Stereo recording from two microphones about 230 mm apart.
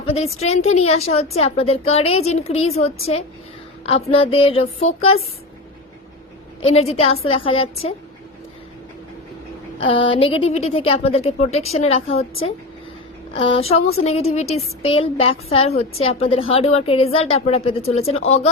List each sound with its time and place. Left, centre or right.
0.0 s a woman's voice: left
6.6 s a woman's voice: left
9.8 s a woman's voice: left
12.1 s a woman's voice: left
13.3 s a woman's voice: left